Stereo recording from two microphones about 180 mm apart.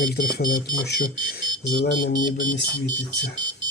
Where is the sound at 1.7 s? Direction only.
55° left (ahead or behind).